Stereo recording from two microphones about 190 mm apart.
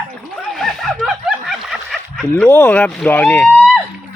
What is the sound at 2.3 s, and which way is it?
Speech, 10° left (ahead or behind).